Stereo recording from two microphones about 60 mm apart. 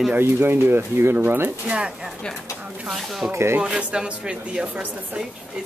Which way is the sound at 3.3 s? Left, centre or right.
Right.